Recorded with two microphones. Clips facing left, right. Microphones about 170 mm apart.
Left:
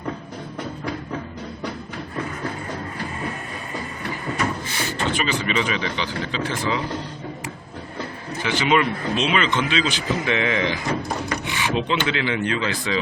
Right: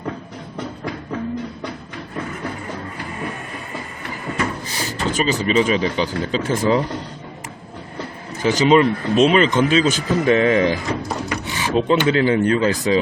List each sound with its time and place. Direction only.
4.7 s speech: 35° right (ahead or behind)
8.4 s speech: 40° right (ahead or behind)
11.4 s a sound: 40° right (ahead or behind)
12.0 s speech: 40° right (ahead or behind)